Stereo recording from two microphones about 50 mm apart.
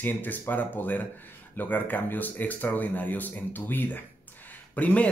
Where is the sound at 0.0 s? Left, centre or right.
Left.